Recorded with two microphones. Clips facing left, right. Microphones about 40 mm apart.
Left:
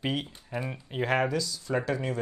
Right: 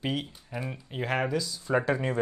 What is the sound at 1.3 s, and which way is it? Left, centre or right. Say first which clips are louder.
Speech: right 2 dB; centre.